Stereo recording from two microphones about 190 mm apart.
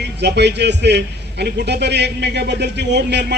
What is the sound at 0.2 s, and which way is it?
A man's voice, 65° right (ahead or behind).